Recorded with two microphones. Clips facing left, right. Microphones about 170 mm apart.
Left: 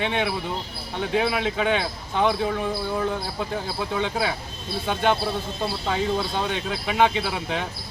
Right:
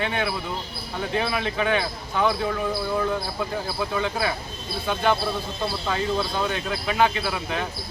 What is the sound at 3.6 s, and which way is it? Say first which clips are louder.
Speech: even; 20° left (ahead or behind).